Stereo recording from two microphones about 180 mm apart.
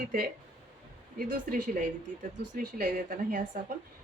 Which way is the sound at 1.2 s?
50° right (ahead or behind).